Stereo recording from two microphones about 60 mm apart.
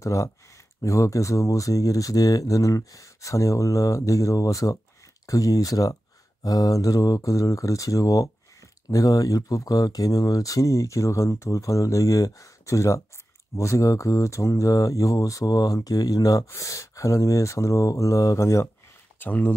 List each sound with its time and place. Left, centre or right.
0.0 s speech: left
6.4 s speech: left
16.5 s speech: left
19.1 s speech: left